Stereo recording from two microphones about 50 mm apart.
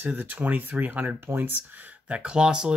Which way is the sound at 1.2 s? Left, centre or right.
Right.